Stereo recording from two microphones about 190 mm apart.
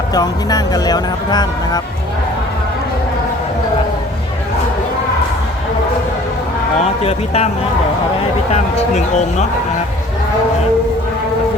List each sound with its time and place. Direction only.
0.1 s speech: 20° left (ahead or behind)
6.8 s speech: 35° left (ahead or behind)
8.5 s speech: 35° left (ahead or behind)